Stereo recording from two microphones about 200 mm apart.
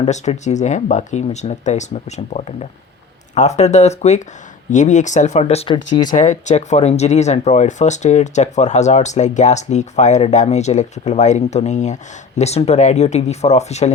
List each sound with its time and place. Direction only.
0.0 s speech: 35° left (ahead or behind)
6.1 s speech: 35° left (ahead or behind)